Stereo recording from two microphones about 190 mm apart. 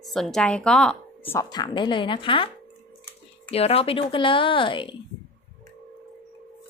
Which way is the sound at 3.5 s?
30° left (ahead or behind).